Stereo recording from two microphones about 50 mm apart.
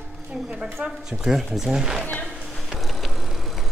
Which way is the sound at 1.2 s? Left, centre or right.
Centre.